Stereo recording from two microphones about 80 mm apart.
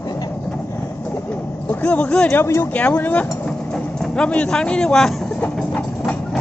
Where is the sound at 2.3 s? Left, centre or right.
Left.